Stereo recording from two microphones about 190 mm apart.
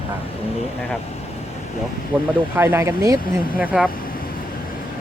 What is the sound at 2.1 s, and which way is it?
Speech, 5° right (ahead or behind).